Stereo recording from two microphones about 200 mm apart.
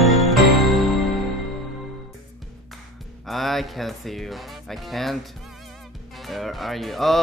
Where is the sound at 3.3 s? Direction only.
Centre (ahead or behind).